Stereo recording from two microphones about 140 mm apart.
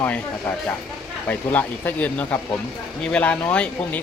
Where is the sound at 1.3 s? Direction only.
10° left (ahead or behind).